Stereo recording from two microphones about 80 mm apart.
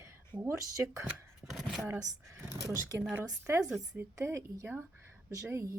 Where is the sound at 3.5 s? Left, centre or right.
Right.